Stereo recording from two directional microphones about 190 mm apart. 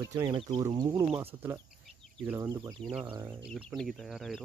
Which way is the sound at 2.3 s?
20° right (ahead or behind).